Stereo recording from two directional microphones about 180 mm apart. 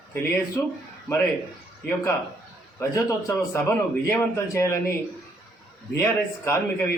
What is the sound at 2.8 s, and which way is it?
A man's voice, 15° left (ahead or behind).